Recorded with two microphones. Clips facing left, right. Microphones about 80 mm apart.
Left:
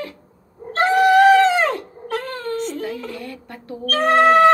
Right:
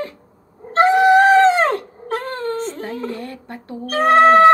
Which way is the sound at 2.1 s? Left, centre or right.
Right.